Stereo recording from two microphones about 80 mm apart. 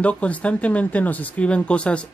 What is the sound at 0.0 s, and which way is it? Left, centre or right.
Speech, centre.